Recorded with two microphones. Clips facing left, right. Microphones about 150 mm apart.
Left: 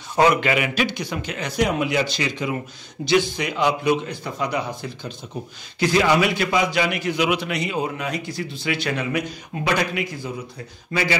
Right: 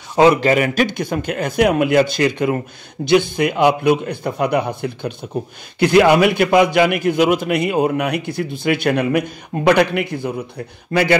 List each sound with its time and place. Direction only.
0.2 s speech: 30° right (ahead or behind)
0.5 s a man's voice: 45° right (ahead or behind)